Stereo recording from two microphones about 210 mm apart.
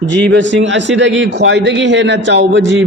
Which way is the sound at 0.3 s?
60° right (ahead or behind).